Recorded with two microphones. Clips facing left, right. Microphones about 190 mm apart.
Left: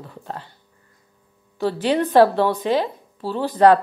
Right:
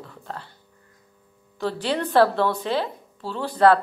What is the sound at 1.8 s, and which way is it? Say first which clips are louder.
A woman's voice: left 4 dB; 15° left (ahead or behind).